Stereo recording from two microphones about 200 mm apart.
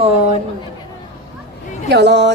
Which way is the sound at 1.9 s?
60° right (ahead or behind).